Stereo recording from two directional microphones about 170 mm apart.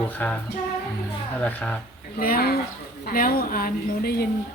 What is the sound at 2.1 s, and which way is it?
A woman's voice, 60° left (ahead or behind).